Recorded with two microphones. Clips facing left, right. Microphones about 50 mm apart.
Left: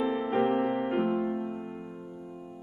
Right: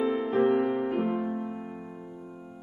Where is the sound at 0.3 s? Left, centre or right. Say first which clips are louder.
Right 3 dB; left.